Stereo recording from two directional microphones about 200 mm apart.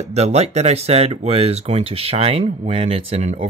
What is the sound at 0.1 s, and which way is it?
Speech, 35° right (ahead or behind).